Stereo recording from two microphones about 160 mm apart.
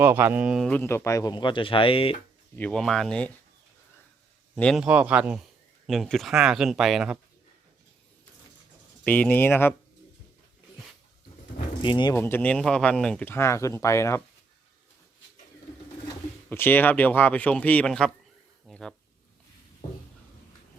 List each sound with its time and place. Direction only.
0.0 s speech: 15° right (ahead or behind)
0.7 s speech: 15° left (ahead or behind); by 2.1 s 35° left (ahead or behind)
2.6 s speech: 5° left (ahead or behind)
4.5 s speech: 5° left (ahead or behind)
4.8 s speech: 10° right (ahead or behind)
5.8 s speech: centre (ahead or behind)
9.0 s speech: 10° left (ahead or behind)
11.8 s speech: 30° left (ahead or behind)
12.1 s speech: 15° left (ahead or behind)
16.5 s speech: 10° left (ahead or behind)
18.7 s a sound: 5° left (ahead or behind)